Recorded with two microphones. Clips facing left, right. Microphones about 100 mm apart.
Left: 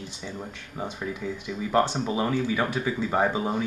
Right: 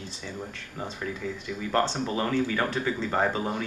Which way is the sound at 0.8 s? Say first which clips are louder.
Left 2 dB; 15° left (ahead or behind).